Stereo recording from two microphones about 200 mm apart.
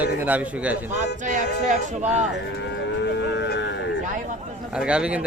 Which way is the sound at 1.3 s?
40° right (ahead or behind).